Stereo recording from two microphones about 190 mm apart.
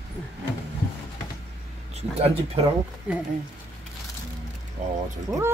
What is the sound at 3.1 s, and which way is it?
Speech, 5° right (ahead or behind).